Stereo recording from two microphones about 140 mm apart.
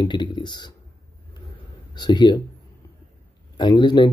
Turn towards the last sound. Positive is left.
turn(degrees=30)  # may be behind; listen again after turning